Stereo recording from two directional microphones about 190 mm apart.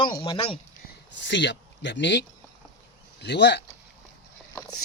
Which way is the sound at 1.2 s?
70° left (ahead or behind).